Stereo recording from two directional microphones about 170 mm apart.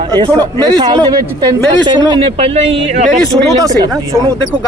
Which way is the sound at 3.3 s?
15° right (ahead or behind).